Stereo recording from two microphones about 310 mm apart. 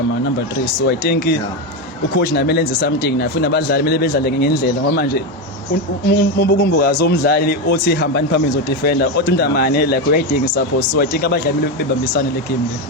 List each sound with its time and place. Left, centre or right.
0.8 s speech: left